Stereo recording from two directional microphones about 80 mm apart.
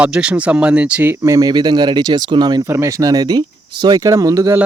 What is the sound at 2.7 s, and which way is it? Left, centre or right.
Speech, right.